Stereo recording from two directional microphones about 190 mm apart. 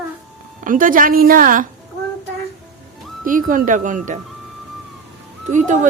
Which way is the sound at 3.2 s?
45° right (ahead or behind).